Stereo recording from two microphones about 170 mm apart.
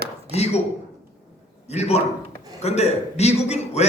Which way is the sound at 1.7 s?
40° left (ahead or behind).